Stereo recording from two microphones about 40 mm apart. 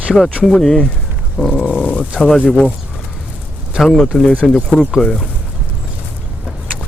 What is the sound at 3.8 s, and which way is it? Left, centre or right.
Speech, centre.